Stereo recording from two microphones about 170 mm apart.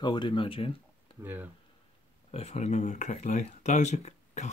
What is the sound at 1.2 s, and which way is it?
Speech, 10° right (ahead or behind).